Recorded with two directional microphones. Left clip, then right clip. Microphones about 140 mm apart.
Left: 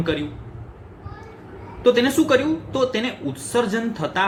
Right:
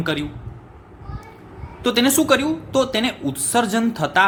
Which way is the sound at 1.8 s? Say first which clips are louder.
Left 1 dB; 50° right (ahead or behind).